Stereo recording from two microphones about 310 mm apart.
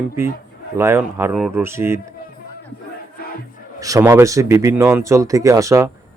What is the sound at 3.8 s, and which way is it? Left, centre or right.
Speech, centre.